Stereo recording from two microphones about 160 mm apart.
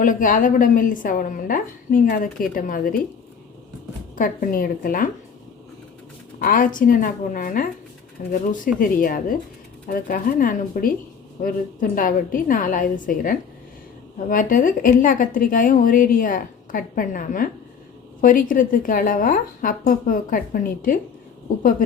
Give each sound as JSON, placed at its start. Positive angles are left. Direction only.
{"t": 0.0, "sound": "a woman's voice", "side_deg": 55}
{"t": 4.1, "sound": "a woman's voice", "side_deg": 60}
{"t": 6.4, "sound": "a woman's voice", "side_deg": 60}